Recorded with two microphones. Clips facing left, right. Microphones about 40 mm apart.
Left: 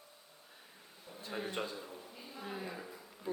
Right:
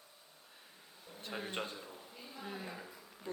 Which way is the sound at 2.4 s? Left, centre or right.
Centre.